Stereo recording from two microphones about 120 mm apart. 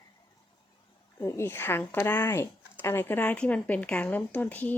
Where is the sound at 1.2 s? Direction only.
20° left (ahead or behind).